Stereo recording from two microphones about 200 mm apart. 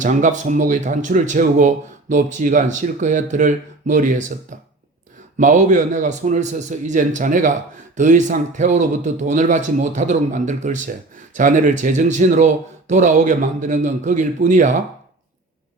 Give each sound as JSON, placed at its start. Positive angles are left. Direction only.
{"t": 0.0, "sound": "speech", "side_deg": -40}
{"t": 5.4, "sound": "speech", "side_deg": -40}